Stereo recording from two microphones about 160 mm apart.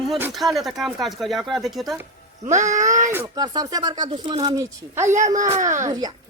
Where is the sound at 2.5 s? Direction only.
50° right (ahead or behind).